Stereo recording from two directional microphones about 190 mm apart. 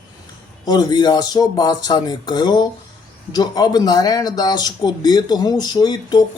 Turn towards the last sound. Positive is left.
turn(degrees=20)  # may be behind; listen again after turning